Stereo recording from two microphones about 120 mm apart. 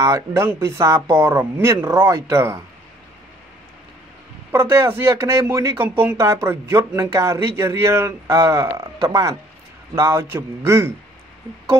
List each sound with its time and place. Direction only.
0.0 s speech: 20° right (ahead or behind)
4.5 s speech: 20° right (ahead or behind)